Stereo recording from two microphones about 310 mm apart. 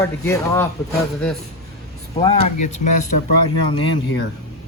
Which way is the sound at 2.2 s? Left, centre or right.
Left.